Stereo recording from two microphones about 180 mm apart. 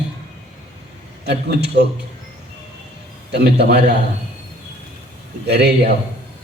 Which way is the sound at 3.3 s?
65° right (ahead or behind).